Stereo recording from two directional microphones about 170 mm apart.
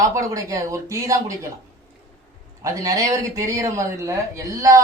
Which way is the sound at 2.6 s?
20° right (ahead or behind).